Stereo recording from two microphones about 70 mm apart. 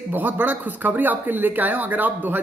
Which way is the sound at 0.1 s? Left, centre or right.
Right.